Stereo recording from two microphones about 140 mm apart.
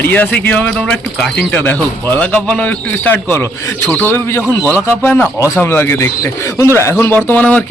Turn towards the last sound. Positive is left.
turn(degrees=10)  # may be behind; listen again after turning